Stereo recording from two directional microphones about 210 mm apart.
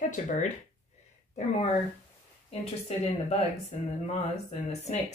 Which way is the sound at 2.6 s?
30° left (ahead or behind).